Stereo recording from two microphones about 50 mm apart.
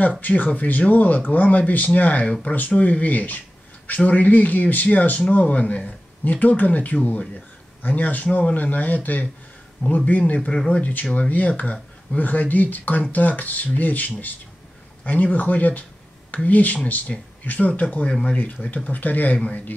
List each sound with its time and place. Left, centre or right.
0.2 s speech: left